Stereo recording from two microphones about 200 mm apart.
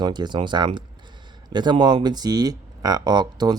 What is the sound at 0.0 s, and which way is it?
Speech, 20° right (ahead or behind).